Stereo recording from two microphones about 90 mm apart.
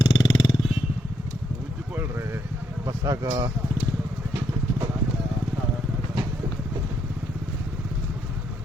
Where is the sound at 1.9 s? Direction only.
25° right (ahead or behind).